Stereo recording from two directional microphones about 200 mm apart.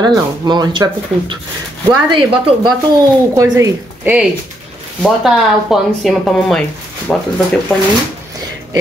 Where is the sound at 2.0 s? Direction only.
25° right (ahead or behind).